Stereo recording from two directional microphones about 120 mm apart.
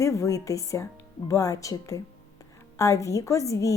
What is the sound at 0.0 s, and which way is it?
Speech, 25° left (ahead or behind).